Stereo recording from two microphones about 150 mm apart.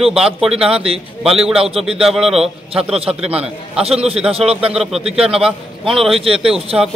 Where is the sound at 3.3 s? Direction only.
40° right (ahead or behind).